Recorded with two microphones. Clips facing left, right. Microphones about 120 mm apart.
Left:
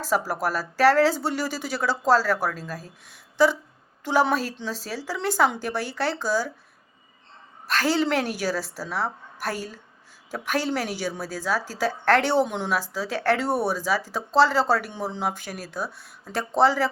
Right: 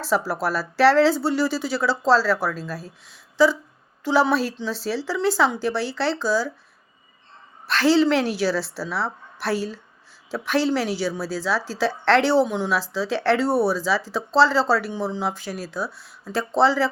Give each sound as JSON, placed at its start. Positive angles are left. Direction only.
{"t": 0.0, "sound": "a woman's voice", "side_deg": 45}
{"t": 7.7, "sound": "a woman's voice", "side_deg": 45}